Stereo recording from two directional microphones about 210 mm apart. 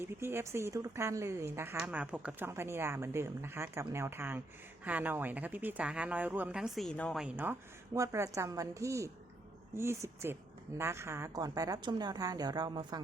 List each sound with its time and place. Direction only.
0.0 s speech: 10° right (ahead or behind)